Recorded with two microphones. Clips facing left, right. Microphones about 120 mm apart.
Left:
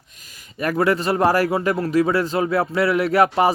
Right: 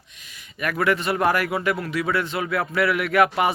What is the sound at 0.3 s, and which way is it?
A man's voice, 35° left (ahead or behind).